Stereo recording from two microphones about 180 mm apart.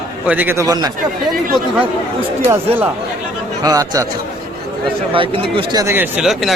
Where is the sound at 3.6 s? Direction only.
20° right (ahead or behind).